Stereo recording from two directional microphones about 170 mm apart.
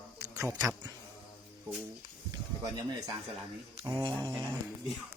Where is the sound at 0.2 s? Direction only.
15° right (ahead or behind).